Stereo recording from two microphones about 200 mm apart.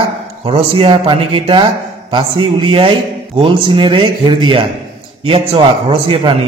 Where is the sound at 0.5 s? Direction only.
25° right (ahead or behind).